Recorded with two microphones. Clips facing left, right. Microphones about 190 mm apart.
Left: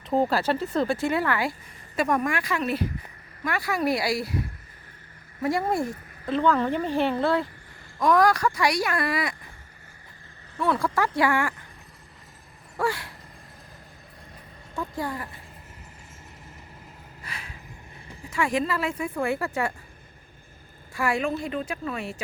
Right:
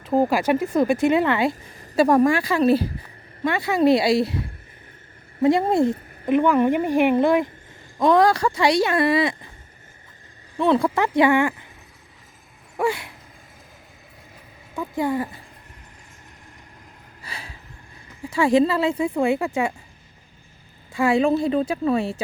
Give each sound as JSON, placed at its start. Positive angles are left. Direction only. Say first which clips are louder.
{"t": 0.0, "sound": "a woman's voice", "louder": "right 4 dB", "side_deg": -5}
{"t": 5.4, "sound": "speech", "louder": "right 7 dB", "side_deg": -25}
{"t": 10.6, "sound": "speech", "louder": "right 6 dB", "side_deg": -25}
{"t": 12.7, "sound": "a sound", "louder": "right 4 dB", "side_deg": -20}
{"t": 14.9, "sound": "speech", "louder": "right 11 dB", "side_deg": -20}
{"t": 17.2, "sound": "a sound", "louder": "right 3 dB", "side_deg": -30}
{"t": 18.3, "sound": "speech", "louder": "right 8 dB", "side_deg": -30}
{"t": 20.9, "sound": "a woman's voice", "louder": "right 8 dB", "side_deg": -25}